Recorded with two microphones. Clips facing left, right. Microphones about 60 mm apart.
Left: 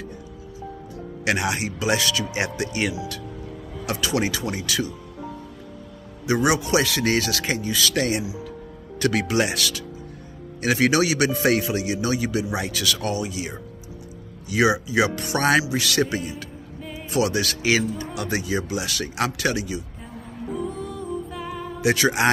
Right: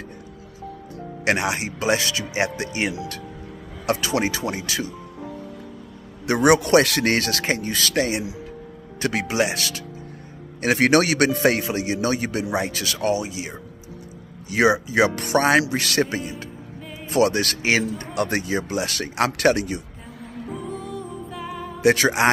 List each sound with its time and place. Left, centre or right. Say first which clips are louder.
1.2 s a man's voice: right 1 dB; right
6.2 s speech: right 4 dB; right
7.9 s speech: right 1 dB; right
10.6 s a man's voice: right 2 dB; right
20.6 s music: left 1 dB; centre
21.8 s a man's voice: right 3 dB; right